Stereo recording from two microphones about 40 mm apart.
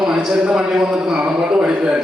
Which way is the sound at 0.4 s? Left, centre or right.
Right.